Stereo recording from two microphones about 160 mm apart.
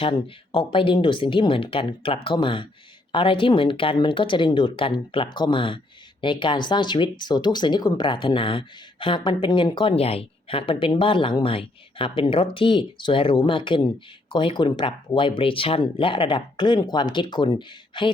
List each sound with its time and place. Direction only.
0.0 s speech: 30° left (ahead or behind)